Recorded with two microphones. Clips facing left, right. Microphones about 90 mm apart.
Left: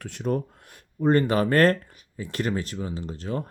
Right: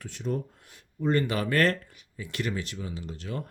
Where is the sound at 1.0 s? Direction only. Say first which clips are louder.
Left 6 dB; 40° left (ahead or behind).